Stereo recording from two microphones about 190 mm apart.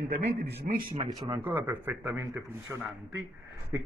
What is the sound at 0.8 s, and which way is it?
Speech, 25° right (ahead or behind).